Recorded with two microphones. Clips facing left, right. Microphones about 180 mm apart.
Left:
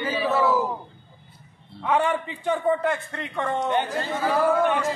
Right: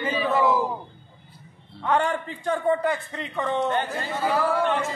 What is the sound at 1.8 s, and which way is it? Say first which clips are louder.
A man's voice: left 1 dB; centre (ahead or behind).